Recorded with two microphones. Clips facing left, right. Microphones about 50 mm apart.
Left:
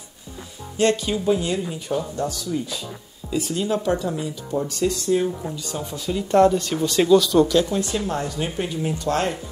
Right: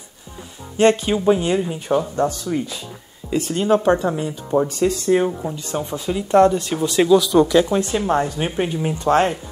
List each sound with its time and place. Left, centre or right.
0.7 s speech: right
6.3 s speech: centre
7.7 s speech: right